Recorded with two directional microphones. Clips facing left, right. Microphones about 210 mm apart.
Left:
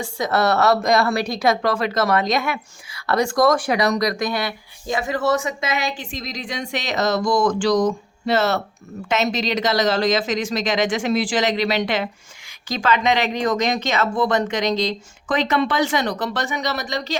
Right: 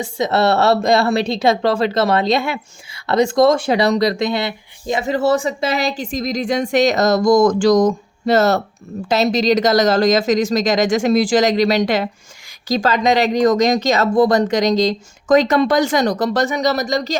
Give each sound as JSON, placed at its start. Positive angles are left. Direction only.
{"t": 0.0, "sound": "speech", "side_deg": -25}